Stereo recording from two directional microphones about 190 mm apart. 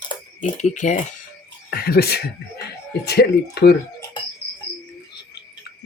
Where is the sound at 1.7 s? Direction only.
55° left (ahead or behind).